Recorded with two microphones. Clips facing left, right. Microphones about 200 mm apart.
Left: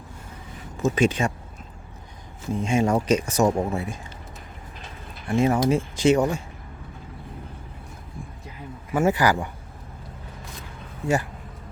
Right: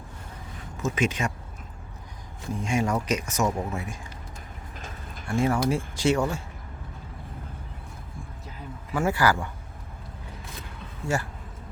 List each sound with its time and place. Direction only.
0.8 s speech: 35° left (ahead or behind)
2.6 s speech: 25° left (ahead or behind)
5.3 s speech: 20° left (ahead or behind)
8.9 s speech: 20° left (ahead or behind)
11.0 s speech: 15° left (ahead or behind)